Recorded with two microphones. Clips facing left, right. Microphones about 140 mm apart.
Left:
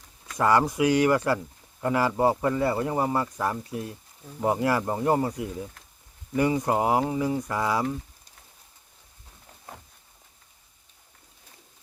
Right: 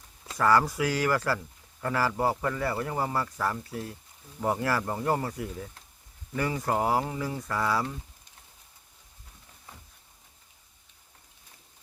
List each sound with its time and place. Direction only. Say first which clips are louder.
0.3 s speech: left 2 dB; 20° left (ahead or behind)